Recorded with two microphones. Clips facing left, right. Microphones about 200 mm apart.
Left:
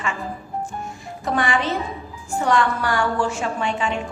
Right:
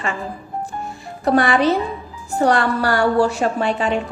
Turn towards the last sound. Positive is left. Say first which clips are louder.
# right 4 dB
turn(degrees=-35)  # may be behind; listen again after turning